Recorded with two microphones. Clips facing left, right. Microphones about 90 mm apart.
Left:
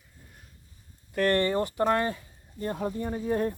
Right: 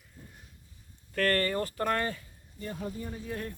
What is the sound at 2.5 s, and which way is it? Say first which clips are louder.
Speech: left 7 dB; 50° left (ahead or behind).